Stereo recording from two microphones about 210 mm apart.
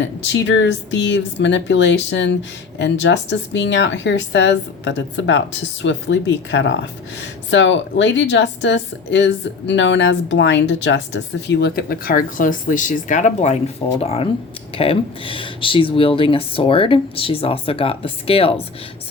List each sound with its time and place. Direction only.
0.0 s a woman's voice: 60° left (ahead or behind); by 18.5 s 25° left (ahead or behind)